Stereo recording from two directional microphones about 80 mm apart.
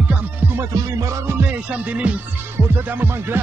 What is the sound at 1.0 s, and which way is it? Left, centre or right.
Music, right.